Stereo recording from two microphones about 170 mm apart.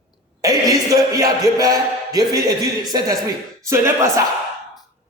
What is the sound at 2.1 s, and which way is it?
Speech, 20° right (ahead or behind).